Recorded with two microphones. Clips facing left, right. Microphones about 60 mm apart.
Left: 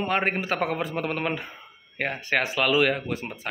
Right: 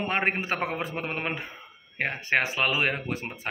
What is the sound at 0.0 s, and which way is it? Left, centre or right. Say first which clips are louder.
Speech: left 2 dB; right.